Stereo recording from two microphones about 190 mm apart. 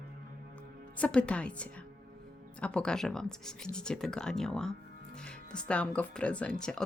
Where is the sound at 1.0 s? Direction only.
5° left (ahead or behind).